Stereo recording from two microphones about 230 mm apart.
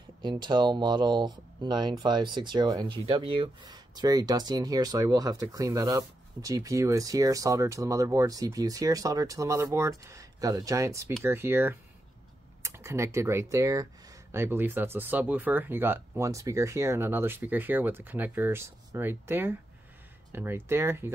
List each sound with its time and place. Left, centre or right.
0.2 s speech: centre